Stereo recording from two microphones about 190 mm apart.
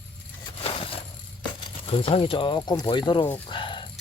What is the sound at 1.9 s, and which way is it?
Speech, 30° left (ahead or behind).